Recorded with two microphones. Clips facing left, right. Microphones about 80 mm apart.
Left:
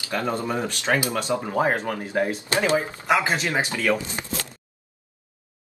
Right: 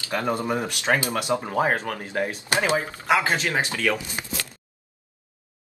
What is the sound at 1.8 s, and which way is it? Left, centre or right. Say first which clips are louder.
Speech: left 3 dB; centre.